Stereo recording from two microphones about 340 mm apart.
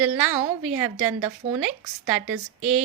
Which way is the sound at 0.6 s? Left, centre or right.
Centre.